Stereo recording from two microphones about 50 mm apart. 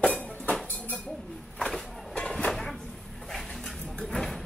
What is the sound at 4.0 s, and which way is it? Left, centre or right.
Vehicle, centre.